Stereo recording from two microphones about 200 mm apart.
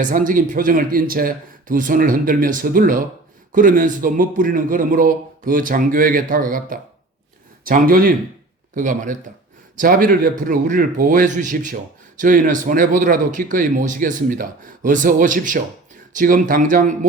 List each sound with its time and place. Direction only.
0.0 s a man's voice: 40° right (ahead or behind)